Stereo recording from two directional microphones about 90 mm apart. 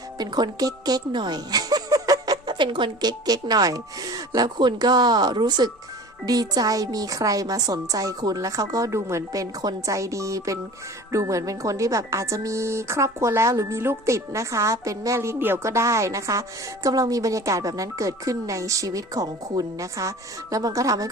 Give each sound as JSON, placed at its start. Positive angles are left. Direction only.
{"t": 0.2, "sound": "speech", "side_deg": -50}
{"t": 2.5, "sound": "speech", "side_deg": -60}